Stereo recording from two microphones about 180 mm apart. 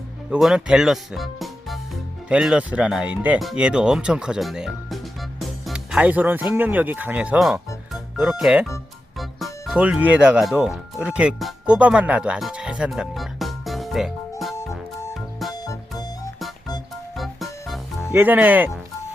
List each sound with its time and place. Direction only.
0.3 s speech: 5° right (ahead or behind)
14.5 s music: 15° left (ahead or behind)
15.1 s music: centre (ahead or behind)
15.5 s music: 20° left (ahead or behind)
17.2 s music: centre (ahead or behind)
18.1 s speech: 10° right (ahead or behind)